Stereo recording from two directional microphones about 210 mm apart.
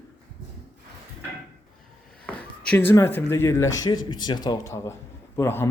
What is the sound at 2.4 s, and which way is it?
A man's voice, 5° left (ahead or behind).